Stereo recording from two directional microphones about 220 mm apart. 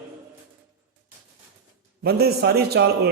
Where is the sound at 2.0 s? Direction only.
45° right (ahead or behind).